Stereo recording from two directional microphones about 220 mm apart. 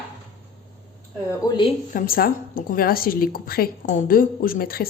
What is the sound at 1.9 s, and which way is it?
A woman's voice, 40° left (ahead or behind).